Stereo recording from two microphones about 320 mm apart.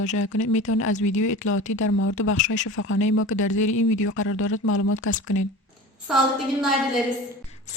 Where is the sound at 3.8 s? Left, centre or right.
Left.